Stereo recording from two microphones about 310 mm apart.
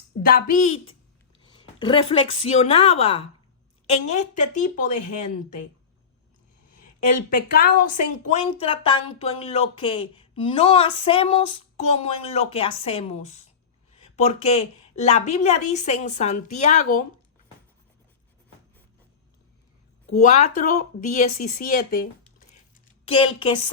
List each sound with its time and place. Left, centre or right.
0.2 s a woman's voice: left
1.8 s a woman's voice: centre
7.3 s a woman's voice: left
20.1 s a woman's voice: left
23.0 s a woman's voice: centre